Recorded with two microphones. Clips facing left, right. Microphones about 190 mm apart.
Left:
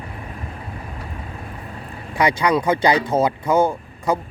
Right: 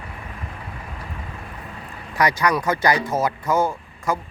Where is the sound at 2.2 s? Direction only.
25° left (ahead or behind).